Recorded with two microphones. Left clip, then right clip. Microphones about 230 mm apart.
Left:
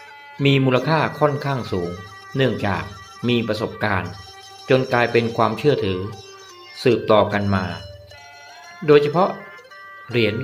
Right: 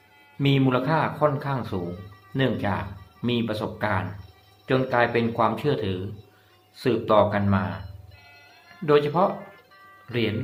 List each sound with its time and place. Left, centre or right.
0.7 s speech: centre
8.9 s speech: centre